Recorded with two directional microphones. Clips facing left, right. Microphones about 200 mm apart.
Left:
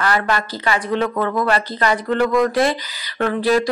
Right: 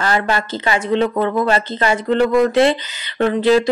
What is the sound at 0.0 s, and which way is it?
Speech, 25° right (ahead or behind).